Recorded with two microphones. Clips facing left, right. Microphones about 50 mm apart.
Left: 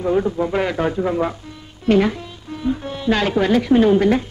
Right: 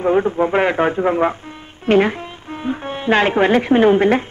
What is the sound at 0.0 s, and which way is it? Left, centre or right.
A woman's voice, right.